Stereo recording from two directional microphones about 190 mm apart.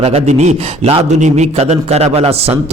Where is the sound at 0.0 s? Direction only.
35° right (ahead or behind).